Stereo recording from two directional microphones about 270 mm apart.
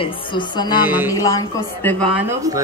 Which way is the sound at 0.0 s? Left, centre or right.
Centre.